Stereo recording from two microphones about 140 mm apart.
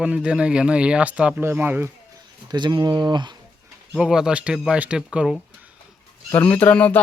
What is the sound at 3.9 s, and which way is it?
Speech, 5° right (ahead or behind).